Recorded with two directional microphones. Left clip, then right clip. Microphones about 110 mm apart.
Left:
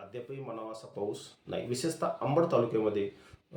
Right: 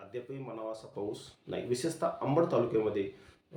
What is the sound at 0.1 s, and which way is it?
Speech, 20° left (ahead or behind).